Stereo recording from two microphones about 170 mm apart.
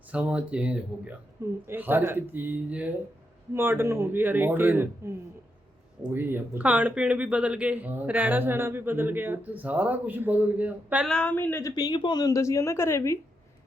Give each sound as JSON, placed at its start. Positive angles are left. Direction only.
{"t": 0.1, "sound": "speech", "side_deg": -5}
{"t": 11.1, "sound": "a woman's voice", "side_deg": 10}
{"t": 11.7, "sound": "a woman's voice", "side_deg": 25}